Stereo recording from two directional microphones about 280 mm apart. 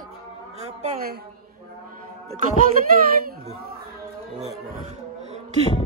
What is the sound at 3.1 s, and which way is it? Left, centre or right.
Speech, right.